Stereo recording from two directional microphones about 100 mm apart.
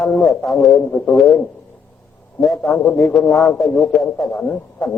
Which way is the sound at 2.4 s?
Centre (ahead or behind).